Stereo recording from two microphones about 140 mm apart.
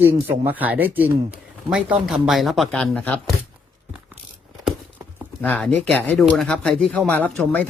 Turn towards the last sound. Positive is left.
turn(degrees=10)  # may be behind; listen again after turning